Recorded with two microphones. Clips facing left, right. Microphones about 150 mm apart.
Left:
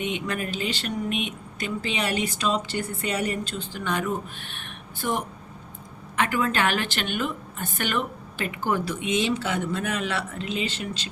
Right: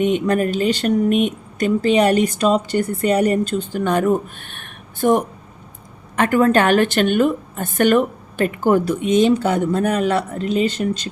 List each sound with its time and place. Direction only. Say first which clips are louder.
0.0 s speech: right 12 dB; 45° right (ahead or behind)